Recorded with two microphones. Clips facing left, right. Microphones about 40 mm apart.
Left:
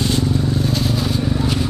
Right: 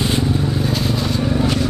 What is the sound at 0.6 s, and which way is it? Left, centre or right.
Vehicle, centre.